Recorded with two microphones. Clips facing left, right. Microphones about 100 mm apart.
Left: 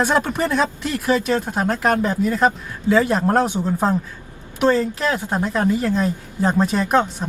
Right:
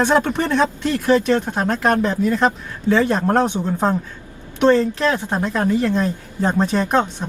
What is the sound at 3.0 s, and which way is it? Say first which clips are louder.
Speech: right 1 dB; 25° right (ahead or behind).